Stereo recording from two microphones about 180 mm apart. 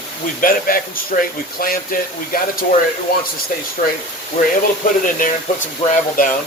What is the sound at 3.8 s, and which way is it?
Speech, 40° left (ahead or behind).